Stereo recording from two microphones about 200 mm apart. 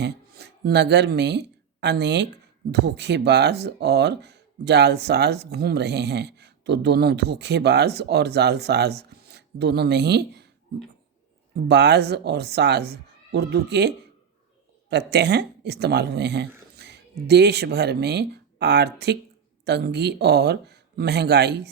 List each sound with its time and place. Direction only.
0.0 s speech: 55° right (ahead or behind)
11.7 s speech: 55° right (ahead or behind)